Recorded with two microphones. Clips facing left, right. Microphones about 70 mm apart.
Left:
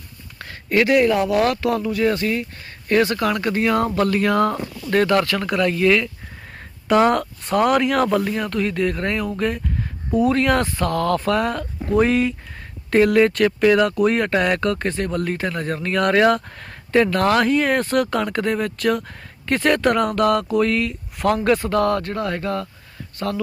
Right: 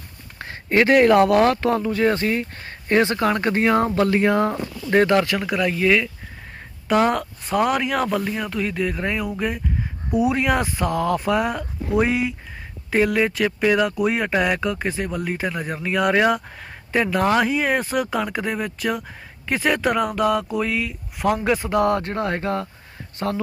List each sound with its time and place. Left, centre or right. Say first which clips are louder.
0.3 s a sound: even; right
0.9 s speech: right 6 dB; right
1.4 s speech: right 1 dB; right; by 21.8 s centre
21.8 s speech: even; right